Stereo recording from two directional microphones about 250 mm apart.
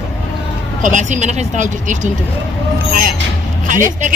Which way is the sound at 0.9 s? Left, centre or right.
Right.